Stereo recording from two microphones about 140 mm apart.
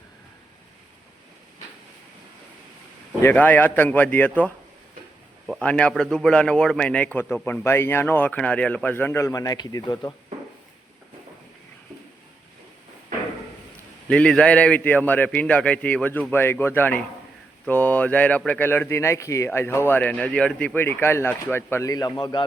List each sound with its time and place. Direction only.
3.2 s speech: 15° left (ahead or behind)
5.5 s speech: 10° left (ahead or behind); by 10.2 s 25° left (ahead or behind)
14.1 s speech: 5° left (ahead or behind); by 22.4 s 30° left (ahead or behind)